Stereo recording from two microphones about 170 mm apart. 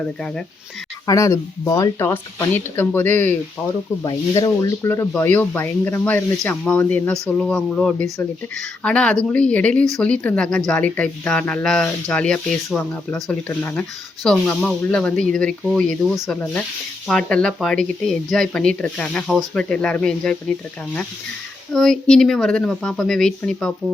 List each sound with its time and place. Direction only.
0.0 s speech: 5° left (ahead or behind)
1.0 s speech: 20° left (ahead or behind)
4.0 s speech: 20° left (ahead or behind); by 20.3 s 5° left (ahead or behind)
21.7 s speech: centre (ahead or behind)